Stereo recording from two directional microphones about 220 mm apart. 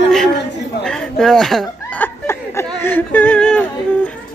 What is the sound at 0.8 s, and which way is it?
Chuckle, centre (ahead or behind).